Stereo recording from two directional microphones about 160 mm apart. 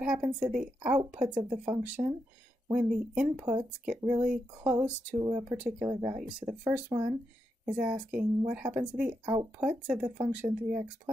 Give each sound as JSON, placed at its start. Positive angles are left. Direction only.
{"t": 0.0, "sound": "speech", "side_deg": -10}
{"t": 5.2, "sound": "speech", "side_deg": -25}
{"t": 6.1, "sound": "speech", "side_deg": -10}
{"t": 6.9, "sound": "speech", "side_deg": -25}
{"t": 7.6, "sound": "speech", "side_deg": -5}
{"t": 9.2, "sound": "speech", "side_deg": -25}
{"t": 9.6, "sound": "speech", "side_deg": -5}